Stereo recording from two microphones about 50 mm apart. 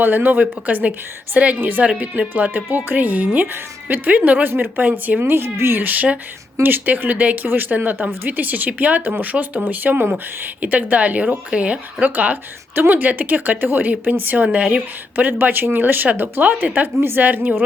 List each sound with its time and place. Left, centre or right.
0.0 s speech: right
5.2 s speech: right
6.6 s speech: right
15.1 s speech: right
17.0 s speech: right
17.2 s speech: right